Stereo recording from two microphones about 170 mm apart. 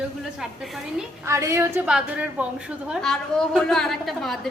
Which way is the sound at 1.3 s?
20° right (ahead or behind).